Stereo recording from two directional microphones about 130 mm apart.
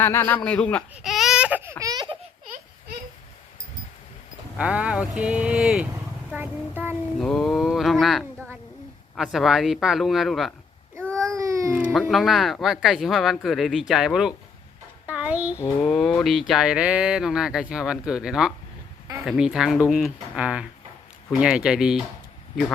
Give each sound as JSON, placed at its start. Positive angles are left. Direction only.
{"t": 0.0, "sound": "a man's voice", "side_deg": 20}
{"t": 0.4, "sound": "baby cry", "side_deg": 10}
{"t": 1.8, "sound": "baby laughter", "side_deg": -30}
{"t": 4.5, "sound": "speech", "side_deg": -10}
{"t": 7.2, "sound": "speech", "side_deg": 5}
{"t": 11.3, "sound": "baby cry", "side_deg": -25}
{"t": 11.9, "sound": "speech", "side_deg": 0}
{"t": 15.0, "sound": "a sound", "side_deg": -10}
{"t": 15.5, "sound": "a sound", "side_deg": 20}
{"t": 15.9, "sound": "speech", "side_deg": 5}